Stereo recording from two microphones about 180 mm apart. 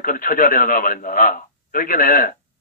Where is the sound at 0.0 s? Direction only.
50° left (ahead or behind).